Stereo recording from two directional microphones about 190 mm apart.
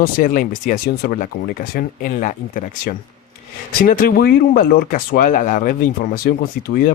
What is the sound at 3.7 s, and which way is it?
Speech, 45° left (ahead or behind).